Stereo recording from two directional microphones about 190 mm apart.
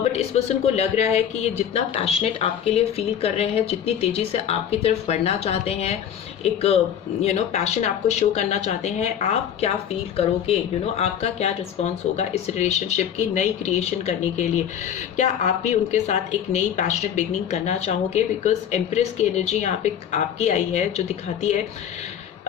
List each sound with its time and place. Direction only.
0.0 s speech: 35° left (ahead or behind)